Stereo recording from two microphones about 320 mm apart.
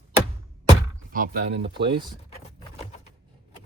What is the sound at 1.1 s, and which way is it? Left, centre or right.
Speech, right.